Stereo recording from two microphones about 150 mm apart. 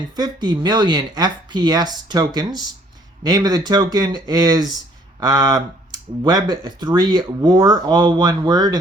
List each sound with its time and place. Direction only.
0.2 s speech: 30° right (ahead or behind)